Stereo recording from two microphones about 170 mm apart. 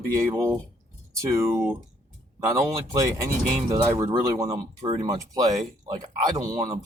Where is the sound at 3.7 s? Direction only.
20° right (ahead or behind).